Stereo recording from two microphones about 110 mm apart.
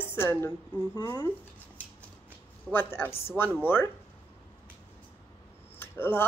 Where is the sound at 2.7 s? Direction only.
20° left (ahead or behind).